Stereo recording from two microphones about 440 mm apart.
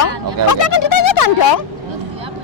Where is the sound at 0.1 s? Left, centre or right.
Right.